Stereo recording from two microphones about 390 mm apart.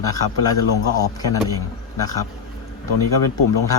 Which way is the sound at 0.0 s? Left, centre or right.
Centre.